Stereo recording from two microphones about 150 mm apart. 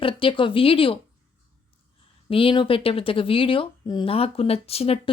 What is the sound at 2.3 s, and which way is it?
Speech, 35° left (ahead or behind).